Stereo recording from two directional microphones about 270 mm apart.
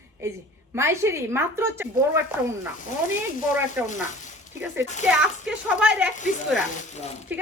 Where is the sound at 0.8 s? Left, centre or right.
Centre.